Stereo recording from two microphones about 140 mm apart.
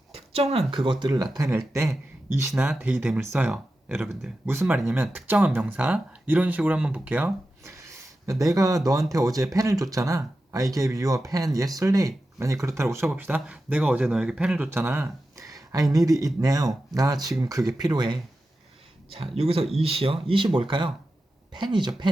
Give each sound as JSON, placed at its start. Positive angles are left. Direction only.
{"t": 0.1, "sound": "a sound", "side_deg": -45}
{"t": 0.7, "sound": "speech", "side_deg": -35}
{"t": 2.5, "sound": "speech", "side_deg": -5}
{"t": 19.4, "sound": "speech", "side_deg": -45}